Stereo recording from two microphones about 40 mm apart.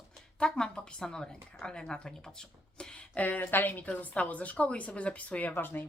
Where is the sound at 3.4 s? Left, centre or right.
Left.